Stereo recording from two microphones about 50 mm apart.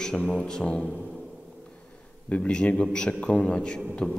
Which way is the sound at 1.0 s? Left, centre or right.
Centre.